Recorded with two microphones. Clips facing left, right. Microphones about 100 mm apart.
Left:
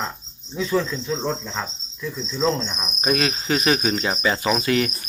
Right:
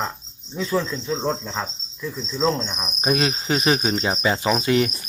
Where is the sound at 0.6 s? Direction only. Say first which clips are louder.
Left 1 dB; 5° right (ahead or behind).